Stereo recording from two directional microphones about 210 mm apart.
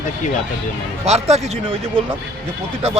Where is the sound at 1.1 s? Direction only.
30° right (ahead or behind).